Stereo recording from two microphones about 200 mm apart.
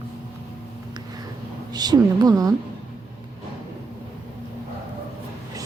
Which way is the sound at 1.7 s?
20° right (ahead or behind).